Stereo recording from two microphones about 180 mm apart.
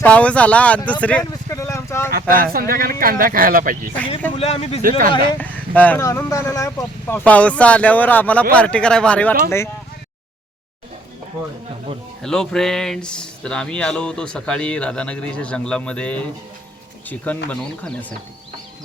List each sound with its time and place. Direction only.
0.0 s speech: 5° left (ahead or behind)
0.9 s vehicle: 5° left (ahead or behind)
2.0 s speech: 55° right (ahead or behind)
4.4 s speech: 35° left (ahead or behind)
4.8 s speech: 50° right (ahead or behind)
5.4 s speech: 10° left (ahead or behind)
12.2 s speech: 5° left (ahead or behind)